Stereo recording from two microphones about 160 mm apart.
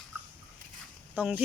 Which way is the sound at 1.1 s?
10° right (ahead or behind).